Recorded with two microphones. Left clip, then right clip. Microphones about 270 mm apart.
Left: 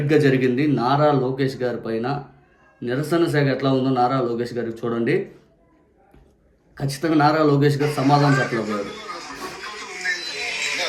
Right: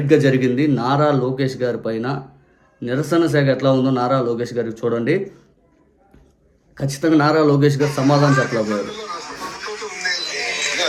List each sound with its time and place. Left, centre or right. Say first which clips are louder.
0.1 s speech: right 3 dB; centre
6.7 s speech: right 3 dB; centre
7.8 s a sound: right 2 dB; centre